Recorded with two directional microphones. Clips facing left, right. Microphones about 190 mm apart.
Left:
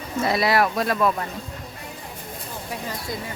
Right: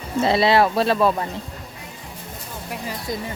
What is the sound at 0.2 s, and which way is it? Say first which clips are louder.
Speech: right 4 dB; 25° right (ahead or behind).